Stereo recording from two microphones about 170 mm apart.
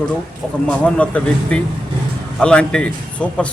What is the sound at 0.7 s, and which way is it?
A man's voice, 5° left (ahead or behind).